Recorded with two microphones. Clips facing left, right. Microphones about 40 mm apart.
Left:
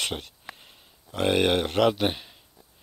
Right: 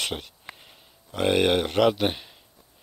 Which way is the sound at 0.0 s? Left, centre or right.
Centre.